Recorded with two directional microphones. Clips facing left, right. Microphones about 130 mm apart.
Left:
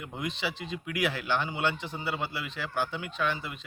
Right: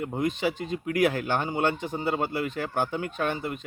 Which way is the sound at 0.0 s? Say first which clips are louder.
Right 8 dB; 45° right (ahead or behind).